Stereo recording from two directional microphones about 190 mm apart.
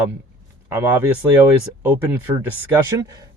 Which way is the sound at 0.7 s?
10° right (ahead or behind).